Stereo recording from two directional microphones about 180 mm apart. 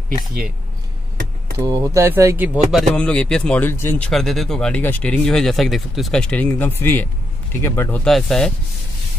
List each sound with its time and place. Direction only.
1.6 s speech: 25° right (ahead or behind)
2.7 s speech: 5° left (ahead or behind)